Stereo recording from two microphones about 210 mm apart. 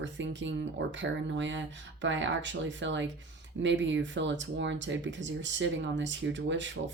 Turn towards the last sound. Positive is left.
turn(degrees=-60)  # may be behind; listen again after turning